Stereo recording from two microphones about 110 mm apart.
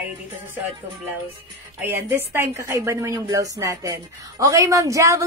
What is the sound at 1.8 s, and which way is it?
A woman's voice, 20° right (ahead or behind).